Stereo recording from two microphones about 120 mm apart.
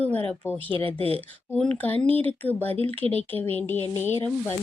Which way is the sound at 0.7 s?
50° right (ahead or behind).